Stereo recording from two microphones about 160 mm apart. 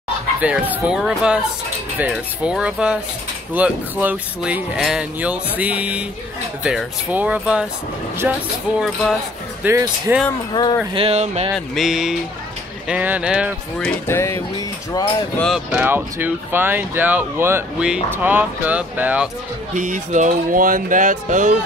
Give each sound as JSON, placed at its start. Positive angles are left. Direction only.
{"t": 0.4, "sound": "speech", "side_deg": -10}
{"t": 8.7, "sound": "music", "side_deg": 0}
{"t": 9.6, "sound": "speech", "side_deg": -15}
{"t": 10.9, "sound": "music", "side_deg": -35}
{"t": 11.5, "sound": "music", "side_deg": 0}
{"t": 12.8, "sound": "speech", "side_deg": -10}
{"t": 14.0, "sound": "music", "side_deg": 15}
{"t": 14.9, "sound": "speech", "side_deg": 25}
{"t": 15.3, "sound": "music", "side_deg": 5}
{"t": 15.7, "sound": "speech", "side_deg": -10}
{"t": 19.7, "sound": "speech", "side_deg": -55}